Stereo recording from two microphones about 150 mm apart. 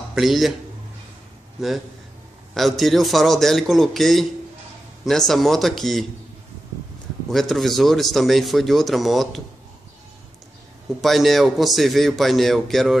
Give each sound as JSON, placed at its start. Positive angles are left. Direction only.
{"t": 0.1, "sound": "speech", "side_deg": 0}
{"t": 2.5, "sound": "speech", "side_deg": 0}
{"t": 7.2, "sound": "speech", "side_deg": 0}
{"t": 11.0, "sound": "speech", "side_deg": 0}